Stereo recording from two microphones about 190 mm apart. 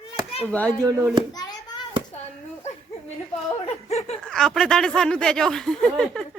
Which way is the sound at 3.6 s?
35° left (ahead or behind).